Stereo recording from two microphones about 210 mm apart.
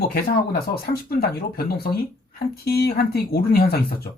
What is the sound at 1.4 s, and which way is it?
Speech, 45° left (ahead or behind).